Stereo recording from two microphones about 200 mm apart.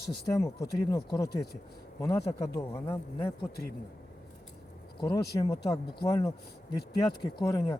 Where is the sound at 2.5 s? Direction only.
15° left (ahead or behind).